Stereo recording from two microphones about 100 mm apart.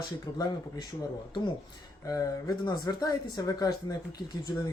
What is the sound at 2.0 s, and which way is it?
Speech, 35° left (ahead or behind).